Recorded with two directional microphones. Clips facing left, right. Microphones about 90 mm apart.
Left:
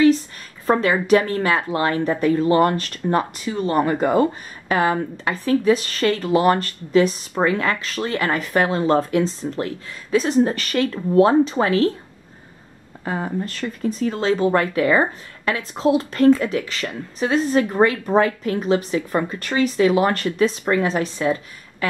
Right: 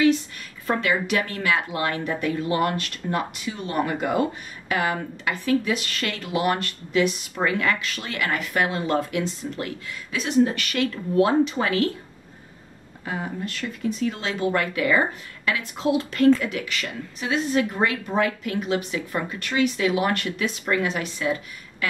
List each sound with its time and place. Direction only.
0.7 s speech: 35° left (ahead or behind)
13.0 s speech: 35° left (ahead or behind)